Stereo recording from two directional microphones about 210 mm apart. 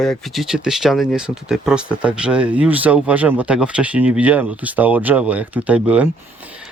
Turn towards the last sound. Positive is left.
turn(degrees=-5)  # may be behind; listen again after turning